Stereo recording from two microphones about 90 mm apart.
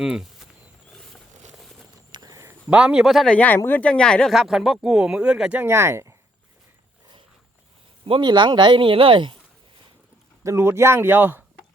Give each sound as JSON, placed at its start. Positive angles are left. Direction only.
{"t": 0.0, "sound": "speech", "side_deg": -5}
{"t": 0.9, "sound": "a sound", "side_deg": 5}
{"t": 2.3, "sound": "a sound", "side_deg": -35}
{"t": 2.6, "sound": "speech", "side_deg": -15}
{"t": 3.2, "sound": "speech", "side_deg": 15}
{"t": 4.3, "sound": "speech", "side_deg": -5}
{"t": 5.5, "sound": "speech", "side_deg": -30}
{"t": 8.0, "sound": "speech", "side_deg": -65}
{"t": 10.4, "sound": "speech", "side_deg": -30}